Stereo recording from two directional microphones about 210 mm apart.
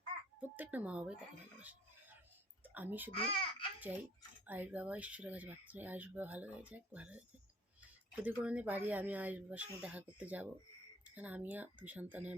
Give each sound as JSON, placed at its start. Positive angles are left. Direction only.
{"t": 0.3, "sound": "speech", "side_deg": -10}
{"t": 2.7, "sound": "speech", "side_deg": -10}
{"t": 3.1, "sound": "a child's voice", "side_deg": 25}
{"t": 3.8, "sound": "a sound", "side_deg": -10}
{"t": 4.4, "sound": "speech", "side_deg": -10}